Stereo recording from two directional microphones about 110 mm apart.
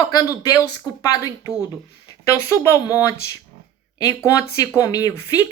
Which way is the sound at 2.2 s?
25° left (ahead or behind).